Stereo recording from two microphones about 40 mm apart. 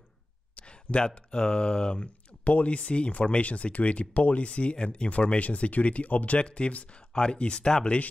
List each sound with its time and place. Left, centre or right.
0.6 s speech: left
2.4 s speech: left